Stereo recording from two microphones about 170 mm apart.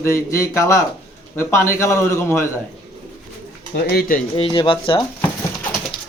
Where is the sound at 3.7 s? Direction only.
65° left (ahead or behind).